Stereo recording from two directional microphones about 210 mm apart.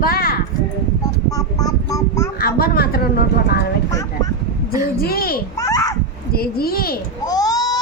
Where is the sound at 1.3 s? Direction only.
15° left (ahead or behind).